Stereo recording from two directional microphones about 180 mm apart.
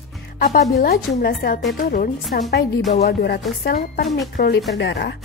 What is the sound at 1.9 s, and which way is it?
Speech, 45° left (ahead or behind).